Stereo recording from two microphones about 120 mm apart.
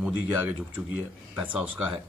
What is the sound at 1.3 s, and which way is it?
Speech, 15° right (ahead or behind).